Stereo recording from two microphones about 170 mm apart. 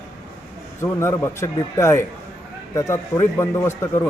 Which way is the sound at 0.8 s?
15° left (ahead or behind).